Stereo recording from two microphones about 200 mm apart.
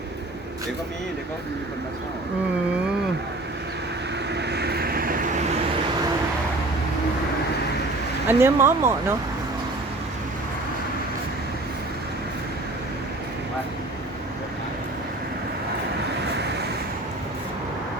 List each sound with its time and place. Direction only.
4.4 s vehicle: 55° right (ahead or behind)
8.3 s speech: 10° right (ahead or behind)